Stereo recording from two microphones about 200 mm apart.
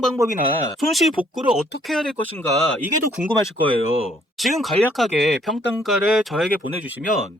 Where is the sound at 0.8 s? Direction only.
Centre (ahead or behind).